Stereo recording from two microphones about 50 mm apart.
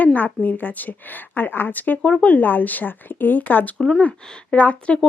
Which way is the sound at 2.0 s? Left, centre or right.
Left.